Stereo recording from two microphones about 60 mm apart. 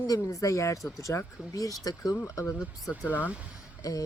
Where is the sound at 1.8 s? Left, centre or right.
Left.